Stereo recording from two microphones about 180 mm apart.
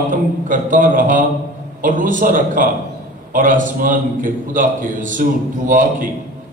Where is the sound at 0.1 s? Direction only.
50° right (ahead or behind).